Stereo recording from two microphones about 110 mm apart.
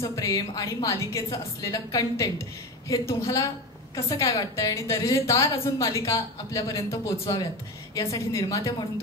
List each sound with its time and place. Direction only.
0.0 s a woman's voice: 30° left (ahead or behind)